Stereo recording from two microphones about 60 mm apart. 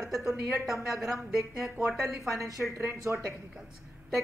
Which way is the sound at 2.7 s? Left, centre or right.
Right.